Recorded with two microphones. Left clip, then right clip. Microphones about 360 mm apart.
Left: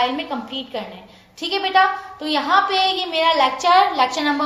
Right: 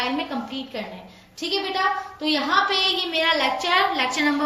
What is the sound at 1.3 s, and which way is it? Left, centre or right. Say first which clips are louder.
A woman's voice: left 7 dB; centre.